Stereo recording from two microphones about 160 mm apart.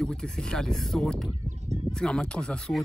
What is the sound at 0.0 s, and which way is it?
Speech, 5° left (ahead or behind).